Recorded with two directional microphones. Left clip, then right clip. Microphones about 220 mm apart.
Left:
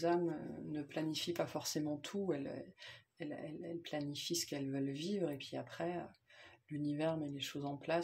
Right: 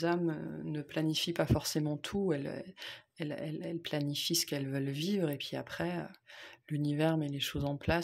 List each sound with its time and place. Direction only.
0.7 s speech: 40° right (ahead or behind)